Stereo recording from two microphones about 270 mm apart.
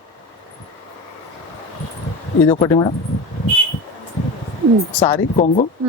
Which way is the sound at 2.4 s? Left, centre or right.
Centre.